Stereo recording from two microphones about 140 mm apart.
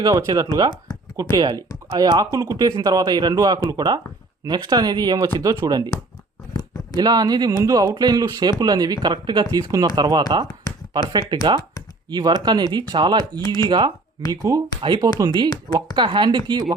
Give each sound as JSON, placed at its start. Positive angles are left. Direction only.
{"t": 0.0, "sound": "speech", "side_deg": -25}
{"t": 6.9, "sound": "speech", "side_deg": -30}
{"t": 13.4, "sound": "speech", "side_deg": 25}
{"t": 13.7, "sound": "speech", "side_deg": -35}